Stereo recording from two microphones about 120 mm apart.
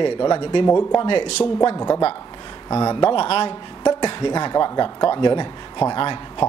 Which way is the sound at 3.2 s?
55° left (ahead or behind).